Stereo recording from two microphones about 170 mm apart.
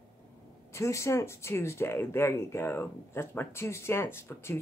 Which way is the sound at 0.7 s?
15° left (ahead or behind).